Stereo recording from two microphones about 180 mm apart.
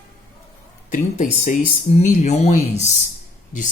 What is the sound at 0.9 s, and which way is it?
Speech, 45° left (ahead or behind).